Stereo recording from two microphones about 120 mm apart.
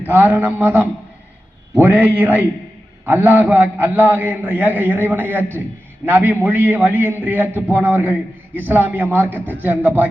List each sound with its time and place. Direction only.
0.0 s a man's voice: 15° right (ahead or behind)